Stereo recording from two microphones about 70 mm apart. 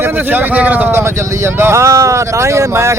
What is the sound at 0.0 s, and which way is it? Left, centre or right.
Speech, right.